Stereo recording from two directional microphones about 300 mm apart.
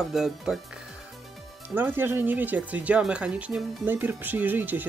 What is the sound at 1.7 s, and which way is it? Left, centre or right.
Speech, centre.